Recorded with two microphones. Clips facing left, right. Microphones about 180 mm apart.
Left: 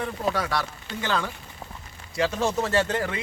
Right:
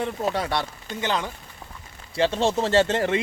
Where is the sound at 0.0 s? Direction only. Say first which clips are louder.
Right 1 dB; 25° right (ahead or behind).